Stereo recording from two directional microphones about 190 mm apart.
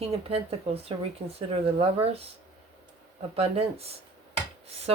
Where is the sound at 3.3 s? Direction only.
30° right (ahead or behind).